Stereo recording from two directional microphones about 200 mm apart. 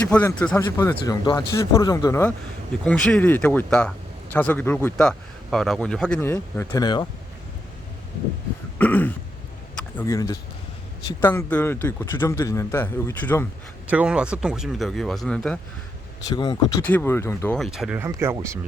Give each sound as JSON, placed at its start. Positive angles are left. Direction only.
{"t": 0.1, "sound": "speech", "side_deg": 5}
{"t": 2.8, "sound": "speech", "side_deg": 5}
{"t": 8.8, "sound": "speech", "side_deg": 10}
{"t": 13.9, "sound": "speech", "side_deg": -5}
{"t": 16.3, "sound": "speech", "side_deg": 20}
{"t": 16.8, "sound": "speech", "side_deg": 10}
{"t": 17.6, "sound": "speech", "side_deg": 0}